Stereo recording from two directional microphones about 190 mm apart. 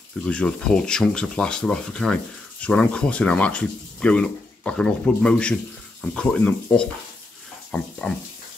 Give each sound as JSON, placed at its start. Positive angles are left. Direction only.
{"t": 0.2, "sound": "speech", "side_deg": 5}